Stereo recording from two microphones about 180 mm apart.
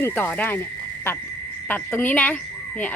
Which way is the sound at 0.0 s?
10° left (ahead or behind).